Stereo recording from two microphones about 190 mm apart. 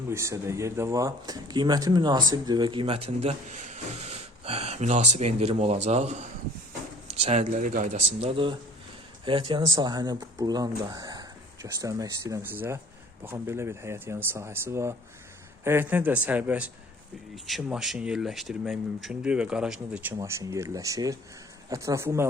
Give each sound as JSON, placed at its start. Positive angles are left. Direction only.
{"t": 0.1, "sound": "speech", "side_deg": -15}
{"t": 8.2, "sound": "speech", "side_deg": -30}